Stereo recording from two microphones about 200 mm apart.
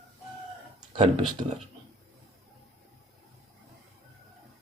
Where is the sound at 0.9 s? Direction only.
25° right (ahead or behind).